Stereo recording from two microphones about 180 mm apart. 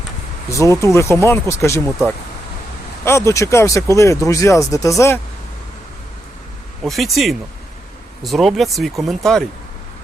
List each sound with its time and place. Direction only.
0.5 s speech: 15° left (ahead or behind)
3.0 s speech: 15° left (ahead or behind)
6.8 s speech: centre (ahead or behind)